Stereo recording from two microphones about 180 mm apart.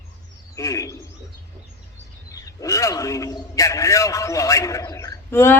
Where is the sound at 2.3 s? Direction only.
20° left (ahead or behind).